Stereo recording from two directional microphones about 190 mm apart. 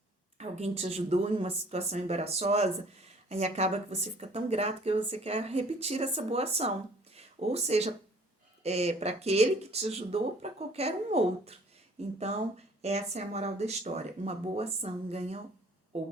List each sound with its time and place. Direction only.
0.3 s speech: 35° right (ahead or behind)